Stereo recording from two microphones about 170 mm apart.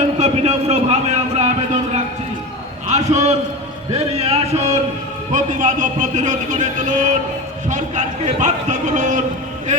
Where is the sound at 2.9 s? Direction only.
40° right (ahead or behind).